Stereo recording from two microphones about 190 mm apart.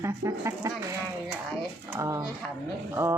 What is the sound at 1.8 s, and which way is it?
Speech, 10° right (ahead or behind).